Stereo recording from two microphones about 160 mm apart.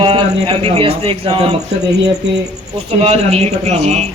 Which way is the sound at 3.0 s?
40° right (ahead or behind).